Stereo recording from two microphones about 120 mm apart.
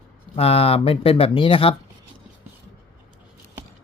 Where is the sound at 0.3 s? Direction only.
55° left (ahead or behind).